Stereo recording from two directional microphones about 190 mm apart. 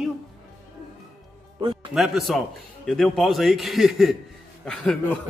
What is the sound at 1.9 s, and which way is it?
A man's voice, centre (ahead or behind).